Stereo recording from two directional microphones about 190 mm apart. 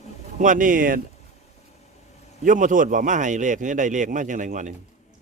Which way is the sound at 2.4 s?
45° right (ahead or behind).